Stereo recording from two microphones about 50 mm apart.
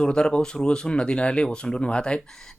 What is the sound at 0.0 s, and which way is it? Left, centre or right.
Speech, centre.